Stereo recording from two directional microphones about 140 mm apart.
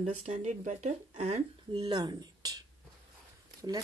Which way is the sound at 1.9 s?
30° right (ahead or behind).